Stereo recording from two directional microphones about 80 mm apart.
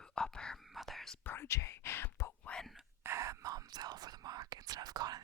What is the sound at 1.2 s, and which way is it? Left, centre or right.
Whispering, left.